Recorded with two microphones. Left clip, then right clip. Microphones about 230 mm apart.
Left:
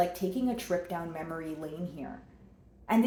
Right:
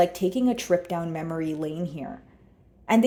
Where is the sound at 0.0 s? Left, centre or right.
Right.